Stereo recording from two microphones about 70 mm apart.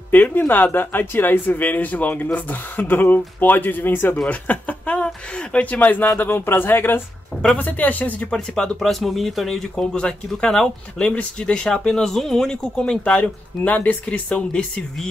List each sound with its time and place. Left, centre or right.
0.1 s speech: left
8.4 s speech: centre